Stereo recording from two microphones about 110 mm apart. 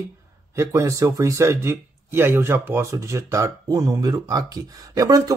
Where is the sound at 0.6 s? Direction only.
30° right (ahead or behind).